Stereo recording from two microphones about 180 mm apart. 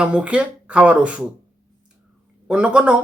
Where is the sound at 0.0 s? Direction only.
5° right (ahead or behind).